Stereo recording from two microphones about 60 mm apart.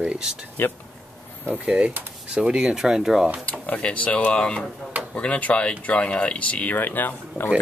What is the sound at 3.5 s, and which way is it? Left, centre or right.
Speech, left.